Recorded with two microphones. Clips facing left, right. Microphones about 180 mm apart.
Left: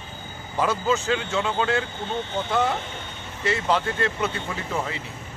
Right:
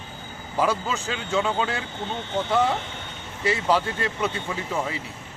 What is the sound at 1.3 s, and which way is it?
Speech, 10° right (ahead or behind).